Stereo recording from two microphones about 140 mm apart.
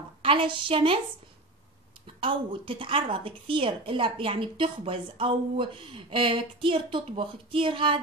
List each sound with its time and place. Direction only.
0.2 s a woman's voice: 40° right (ahead or behind)
2.1 s a woman's voice: 40° right (ahead or behind)